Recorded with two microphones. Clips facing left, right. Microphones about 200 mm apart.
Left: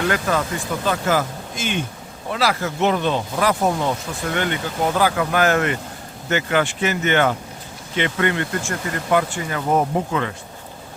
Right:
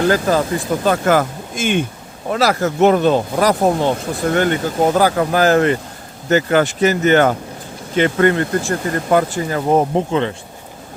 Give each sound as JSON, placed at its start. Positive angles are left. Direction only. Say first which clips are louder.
{"t": 0.0, "sound": "speech", "louder": "right 6 dB", "side_deg": -35}